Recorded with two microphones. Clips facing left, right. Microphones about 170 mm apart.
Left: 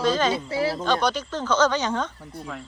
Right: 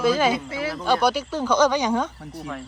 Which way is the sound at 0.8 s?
10° right (ahead or behind).